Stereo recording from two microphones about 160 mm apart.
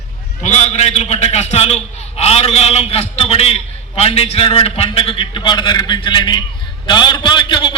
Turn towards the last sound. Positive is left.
turn(degrees=30)  # may be behind; listen again after turning